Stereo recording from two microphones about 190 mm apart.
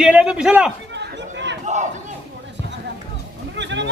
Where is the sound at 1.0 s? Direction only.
65° right (ahead or behind).